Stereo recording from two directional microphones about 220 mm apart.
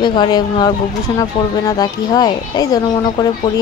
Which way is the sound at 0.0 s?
20° left (ahead or behind).